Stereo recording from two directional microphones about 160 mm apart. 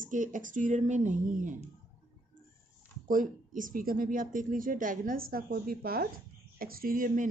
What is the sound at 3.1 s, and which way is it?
Speech, 55° right (ahead or behind).